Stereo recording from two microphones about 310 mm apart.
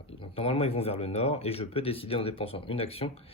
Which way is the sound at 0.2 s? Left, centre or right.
Centre.